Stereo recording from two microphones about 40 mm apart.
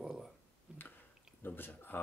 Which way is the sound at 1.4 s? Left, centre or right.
Left.